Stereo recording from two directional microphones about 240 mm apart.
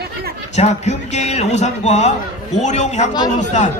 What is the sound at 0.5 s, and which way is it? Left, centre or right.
A man's voice, left.